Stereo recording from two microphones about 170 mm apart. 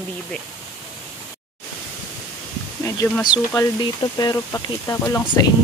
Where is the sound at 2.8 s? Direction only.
15° left (ahead or behind).